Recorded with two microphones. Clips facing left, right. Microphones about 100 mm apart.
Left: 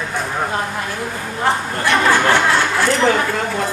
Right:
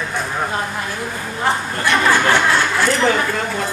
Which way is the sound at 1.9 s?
30° left (ahead or behind).